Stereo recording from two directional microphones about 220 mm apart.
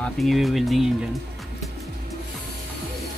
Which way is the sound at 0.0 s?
Centre (ahead or behind).